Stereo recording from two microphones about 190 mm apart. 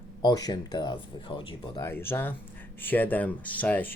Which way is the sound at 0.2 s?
20° left (ahead or behind).